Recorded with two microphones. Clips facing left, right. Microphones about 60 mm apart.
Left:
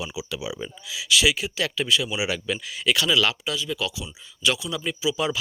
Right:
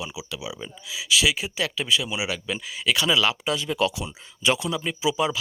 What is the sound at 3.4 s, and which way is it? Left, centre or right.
Speech, right.